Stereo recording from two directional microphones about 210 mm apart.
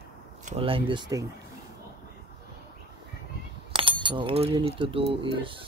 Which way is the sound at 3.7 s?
25° right (ahead or behind).